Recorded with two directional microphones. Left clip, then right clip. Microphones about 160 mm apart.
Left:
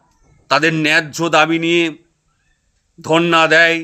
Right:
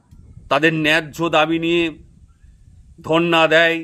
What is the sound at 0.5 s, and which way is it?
Speech, 15° right (ahead or behind).